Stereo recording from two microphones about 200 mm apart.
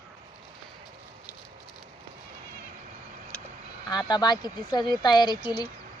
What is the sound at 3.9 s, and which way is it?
Speech, 20° left (ahead or behind).